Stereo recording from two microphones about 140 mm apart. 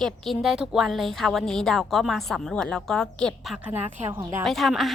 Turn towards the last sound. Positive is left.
turn(degrees=0)  # may be behind; listen again after turning